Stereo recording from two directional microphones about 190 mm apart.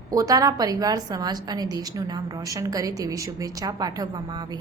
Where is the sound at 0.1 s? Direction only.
20° right (ahead or behind).